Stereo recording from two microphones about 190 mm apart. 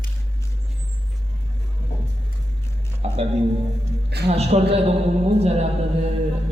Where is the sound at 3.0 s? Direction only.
30° right (ahead or behind).